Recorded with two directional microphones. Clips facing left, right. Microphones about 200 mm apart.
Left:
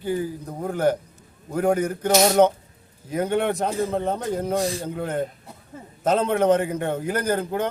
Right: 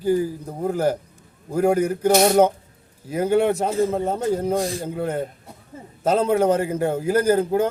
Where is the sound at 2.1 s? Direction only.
60° right (ahead or behind).